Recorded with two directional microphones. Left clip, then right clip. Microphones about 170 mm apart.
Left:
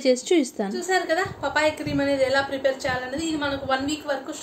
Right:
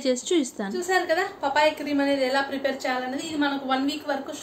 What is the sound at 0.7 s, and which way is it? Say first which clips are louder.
A woman's voice: even; 5° right (ahead or behind).